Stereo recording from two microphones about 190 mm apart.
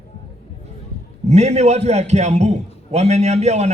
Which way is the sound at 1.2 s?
35° right (ahead or behind).